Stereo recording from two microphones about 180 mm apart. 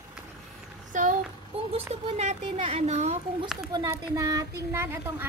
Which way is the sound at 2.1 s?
35° right (ahead or behind).